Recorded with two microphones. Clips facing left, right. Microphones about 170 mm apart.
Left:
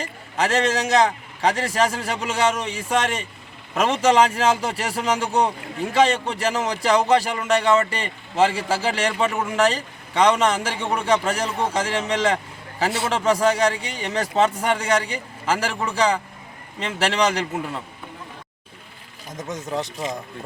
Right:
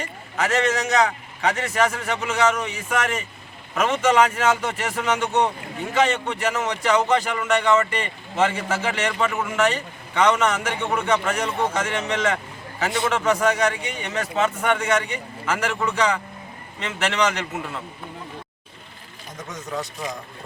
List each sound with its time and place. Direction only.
0.0 s speech: 30° left (ahead or behind)
19.5 s speech: 25° left (ahead or behind)